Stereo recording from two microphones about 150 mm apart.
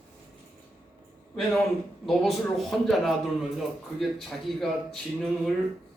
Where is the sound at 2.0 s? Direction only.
Centre (ahead or behind).